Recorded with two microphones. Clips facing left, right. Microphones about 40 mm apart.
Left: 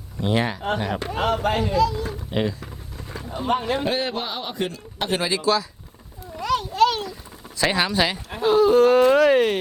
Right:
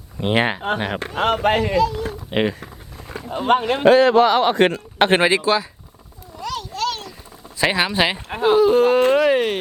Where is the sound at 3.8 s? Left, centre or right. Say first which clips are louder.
Right 13 dB; right.